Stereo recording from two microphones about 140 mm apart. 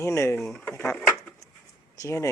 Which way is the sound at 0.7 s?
15° left (ahead or behind).